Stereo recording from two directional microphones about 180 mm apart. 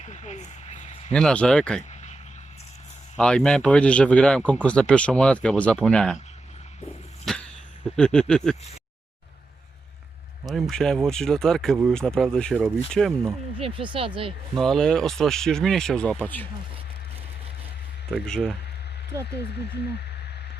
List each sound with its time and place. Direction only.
0.0 s a sound: 40° left (ahead or behind)
1.1 s speech: 5° left (ahead or behind)
1.9 s a sound: 40° left (ahead or behind)
3.2 s speech: 5° left (ahead or behind)
7.3 s dog: centre (ahead or behind)
7.9 s speech: 5° left (ahead or behind)
10.4 s speech: centre (ahead or behind)
13.6 s speech: 30° right (ahead or behind)
14.5 s speech: centre (ahead or behind)
18.1 s speech: 5° left (ahead or behind)
19.4 s speech: 65° left (ahead or behind)